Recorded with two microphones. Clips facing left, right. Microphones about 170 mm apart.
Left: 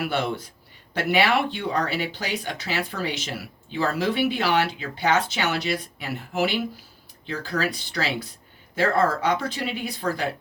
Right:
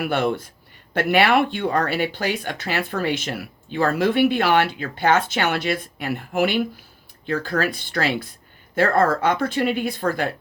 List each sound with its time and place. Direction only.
0.0 s speech: 50° right (ahead or behind)